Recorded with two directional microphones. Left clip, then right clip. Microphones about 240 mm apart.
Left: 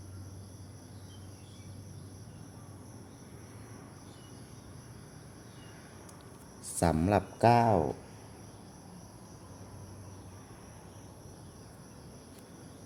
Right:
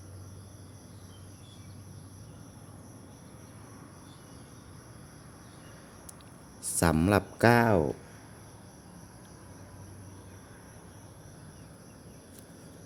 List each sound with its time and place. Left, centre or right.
6.7 s speech: right